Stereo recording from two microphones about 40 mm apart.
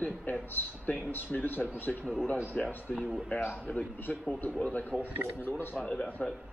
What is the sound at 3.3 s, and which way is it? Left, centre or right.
A man's voice, left.